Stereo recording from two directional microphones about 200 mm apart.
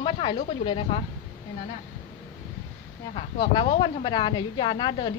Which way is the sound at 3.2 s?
25° left (ahead or behind).